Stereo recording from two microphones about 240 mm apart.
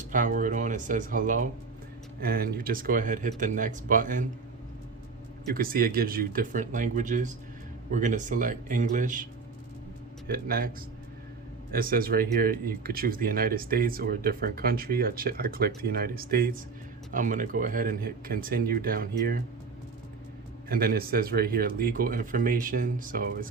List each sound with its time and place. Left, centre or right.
0.1 s speech: right
5.5 s speech: right
10.2 s speech: right
11.7 s speech: right
20.7 s speech: right